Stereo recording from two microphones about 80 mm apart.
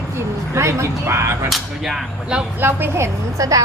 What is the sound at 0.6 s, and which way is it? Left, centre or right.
Speech, right.